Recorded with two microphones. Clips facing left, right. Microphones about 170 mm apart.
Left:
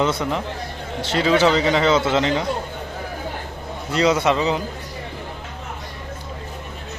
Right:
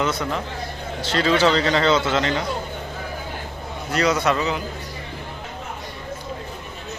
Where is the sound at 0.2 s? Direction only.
20° left (ahead or behind).